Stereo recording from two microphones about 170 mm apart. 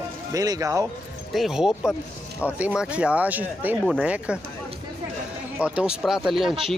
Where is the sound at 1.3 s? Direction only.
Centre (ahead or behind).